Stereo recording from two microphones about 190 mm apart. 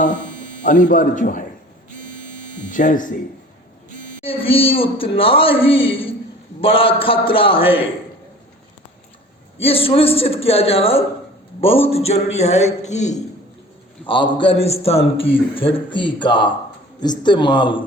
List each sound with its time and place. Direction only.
0.6 s speech: 40° left (ahead or behind)
2.6 s speech: 45° left (ahead or behind)
4.2 s a man's voice: 30° left (ahead or behind)
9.6 s a man's voice: 30° left (ahead or behind)
14.0 s a man's voice: 25° left (ahead or behind)